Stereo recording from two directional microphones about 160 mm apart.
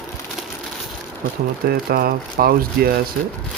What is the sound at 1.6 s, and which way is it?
Speech, 70° right (ahead or behind).